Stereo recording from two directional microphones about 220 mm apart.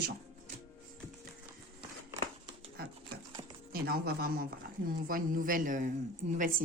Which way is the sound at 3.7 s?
45° right (ahead or behind).